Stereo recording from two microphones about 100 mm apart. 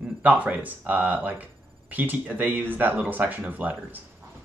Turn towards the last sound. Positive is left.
turn(degrees=-15)  # may be behind; listen again after turning